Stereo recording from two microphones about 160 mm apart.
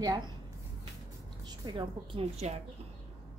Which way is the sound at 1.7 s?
35° right (ahead or behind).